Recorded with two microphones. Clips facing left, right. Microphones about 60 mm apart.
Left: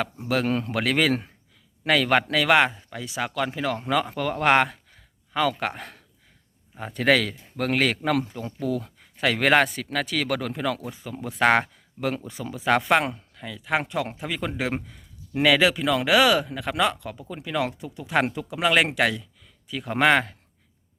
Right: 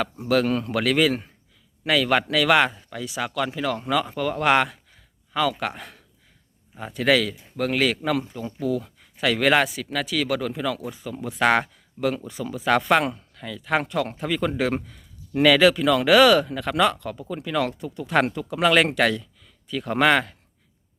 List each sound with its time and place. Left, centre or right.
0.0 s speech: left
1.8 s speech: left
2.3 s speech: left
4.1 s speech: left
10.9 s speech: left